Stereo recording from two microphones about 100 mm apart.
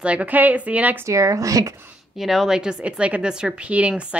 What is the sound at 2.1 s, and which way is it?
A woman's voice, centre (ahead or behind).